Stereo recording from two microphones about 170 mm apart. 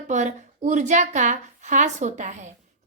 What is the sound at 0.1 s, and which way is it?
A woman's voice, 45° right (ahead or behind).